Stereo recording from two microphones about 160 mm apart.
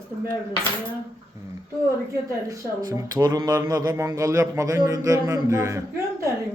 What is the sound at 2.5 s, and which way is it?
Speech, 20° right (ahead or behind).